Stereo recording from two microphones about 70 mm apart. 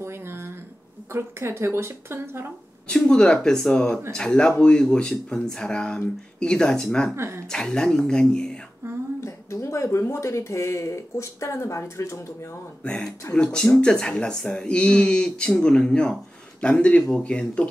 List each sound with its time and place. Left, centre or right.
0.0 s a sound: right
1.1 s a woman's voice: right
2.9 s speech: centre
7.2 s a woman's voice: right
7.5 s speech: centre
8.8 s a sound: right
9.2 s speech: left
12.8 s speech: centre